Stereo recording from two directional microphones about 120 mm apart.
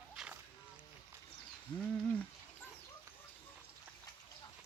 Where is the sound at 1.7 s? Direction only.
10° left (ahead or behind).